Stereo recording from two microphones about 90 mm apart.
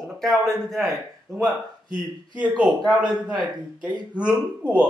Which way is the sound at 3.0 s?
55° right (ahead or behind).